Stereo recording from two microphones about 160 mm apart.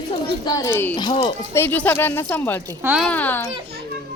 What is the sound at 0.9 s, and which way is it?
Speech, 30° left (ahead or behind).